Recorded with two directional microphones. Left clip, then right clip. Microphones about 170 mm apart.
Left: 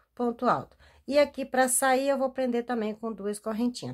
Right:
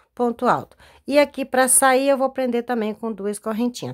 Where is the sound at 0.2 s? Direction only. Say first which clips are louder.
Right 7 dB; 30° right (ahead or behind).